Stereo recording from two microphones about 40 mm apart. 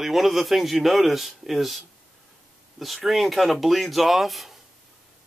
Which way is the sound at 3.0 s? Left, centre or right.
Centre.